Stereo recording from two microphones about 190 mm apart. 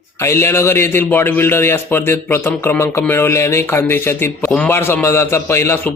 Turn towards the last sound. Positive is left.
turn(degrees=15)  # may be behind; listen again after turning